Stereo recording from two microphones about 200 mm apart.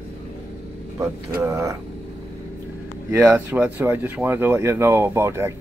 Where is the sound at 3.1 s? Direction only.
15° right (ahead or behind).